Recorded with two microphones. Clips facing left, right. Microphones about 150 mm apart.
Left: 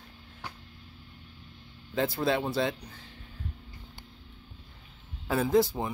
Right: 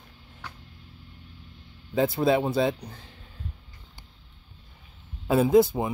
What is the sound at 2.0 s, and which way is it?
Speech, 20° right (ahead or behind).